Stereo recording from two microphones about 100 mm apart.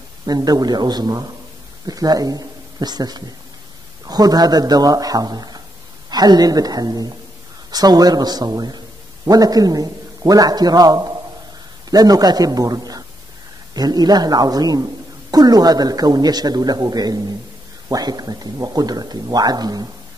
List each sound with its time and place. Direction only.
0.3 s a man's voice: 40° right (ahead or behind)